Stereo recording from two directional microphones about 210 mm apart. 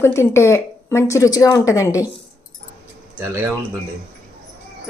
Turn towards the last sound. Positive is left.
turn(degrees=-10)  # may be behind; listen again after turning